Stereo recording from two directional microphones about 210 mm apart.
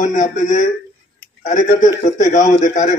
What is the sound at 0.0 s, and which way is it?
A man's voice, 35° left (ahead or behind).